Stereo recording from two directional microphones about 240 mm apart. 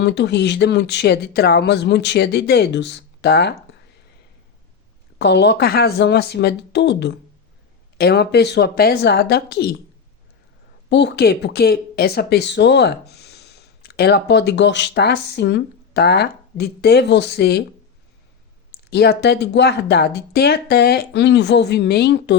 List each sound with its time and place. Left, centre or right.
0.0 s speech: left
5.2 s speech: left
10.8 s speech: left
18.9 s speech: left